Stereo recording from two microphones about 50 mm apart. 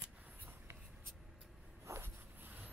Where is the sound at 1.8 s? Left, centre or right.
Right.